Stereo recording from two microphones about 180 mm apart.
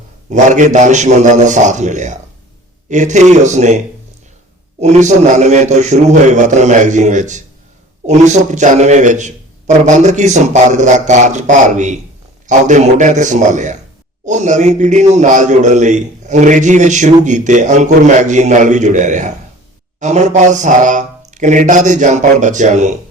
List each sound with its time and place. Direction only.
0.3 s a man's voice: 40° right (ahead or behind)
4.8 s a man's voice: 40° right (ahead or behind)